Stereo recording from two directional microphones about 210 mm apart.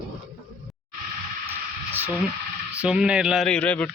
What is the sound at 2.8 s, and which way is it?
Speech, 5° right (ahead or behind).